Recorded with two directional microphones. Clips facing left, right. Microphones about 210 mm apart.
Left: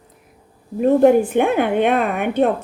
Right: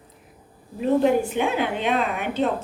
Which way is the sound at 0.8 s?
50° left (ahead or behind).